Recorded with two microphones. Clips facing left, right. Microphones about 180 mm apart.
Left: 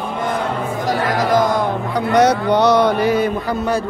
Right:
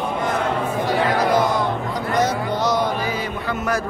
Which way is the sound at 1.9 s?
70° left (ahead or behind).